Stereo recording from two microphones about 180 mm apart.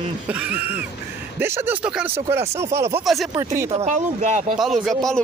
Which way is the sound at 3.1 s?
Centre (ahead or behind).